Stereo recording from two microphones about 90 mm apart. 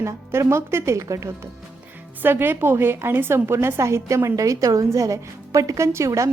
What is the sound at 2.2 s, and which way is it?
A woman's voice, 25° right (ahead or behind).